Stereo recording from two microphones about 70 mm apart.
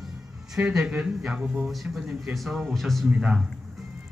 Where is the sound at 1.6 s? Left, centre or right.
Centre.